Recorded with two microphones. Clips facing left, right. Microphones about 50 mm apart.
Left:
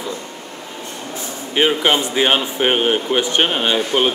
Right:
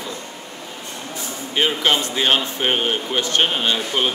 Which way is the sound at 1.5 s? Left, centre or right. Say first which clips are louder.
Left 3 dB; centre.